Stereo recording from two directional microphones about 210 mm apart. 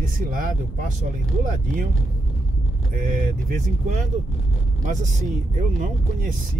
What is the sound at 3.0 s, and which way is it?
Speech, 40° right (ahead or behind).